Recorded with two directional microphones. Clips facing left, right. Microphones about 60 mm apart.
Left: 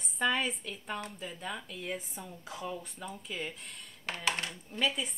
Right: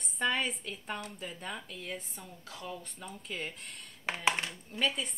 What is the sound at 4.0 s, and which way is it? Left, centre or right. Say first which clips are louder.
Speech: right 3 dB; centre.